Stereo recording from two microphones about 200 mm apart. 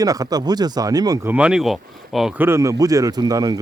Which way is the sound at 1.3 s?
5° right (ahead or behind).